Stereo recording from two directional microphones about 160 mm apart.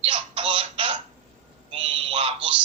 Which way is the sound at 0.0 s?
35° right (ahead or behind).